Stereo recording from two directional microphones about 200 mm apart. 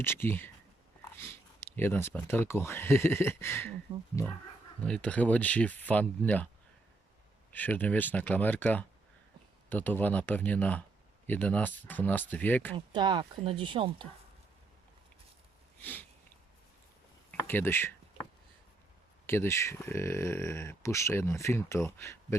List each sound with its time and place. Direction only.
0.0 s speech: 10° left (ahead or behind)
1.7 s speech: 10° left (ahead or behind)
7.5 s speech: 10° left (ahead or behind)
12.7 s speech: 25° right (ahead or behind)
15.8 s speech: 10° left (ahead or behind)
17.3 s speech: 10° left (ahead or behind)
19.3 s speech: 10° left (ahead or behind)